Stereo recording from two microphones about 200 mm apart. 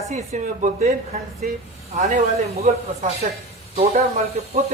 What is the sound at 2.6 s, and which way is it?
Speech, 35° right (ahead or behind).